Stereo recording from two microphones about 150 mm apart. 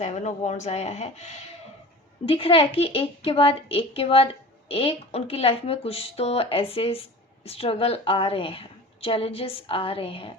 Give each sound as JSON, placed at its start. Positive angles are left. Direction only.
{"t": 0.0, "sound": "a woman's voice", "side_deg": 50}